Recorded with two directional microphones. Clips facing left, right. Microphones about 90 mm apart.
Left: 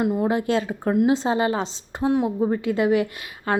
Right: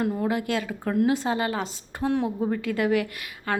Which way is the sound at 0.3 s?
30° left (ahead or behind).